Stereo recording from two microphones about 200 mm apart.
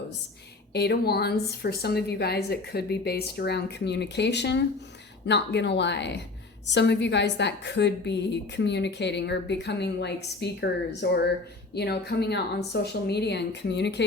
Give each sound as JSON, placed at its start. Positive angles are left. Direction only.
{"t": 0.7, "sound": "a woman's voice", "side_deg": 55}